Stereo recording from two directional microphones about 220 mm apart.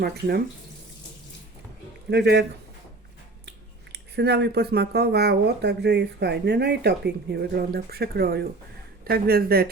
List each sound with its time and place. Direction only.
0.0 s speech: 45° right (ahead or behind)
2.0 s speech: 50° right (ahead or behind)
3.9 s speech: 50° right (ahead or behind)